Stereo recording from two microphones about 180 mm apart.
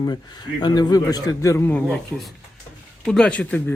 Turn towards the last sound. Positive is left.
turn(degrees=10)  # may be behind; listen again after turning